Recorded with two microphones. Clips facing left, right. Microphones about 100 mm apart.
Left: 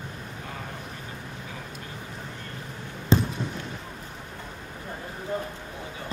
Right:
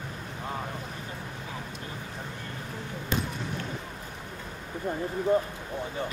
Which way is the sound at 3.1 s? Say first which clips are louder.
Left 8 dB; 30° left (ahead or behind).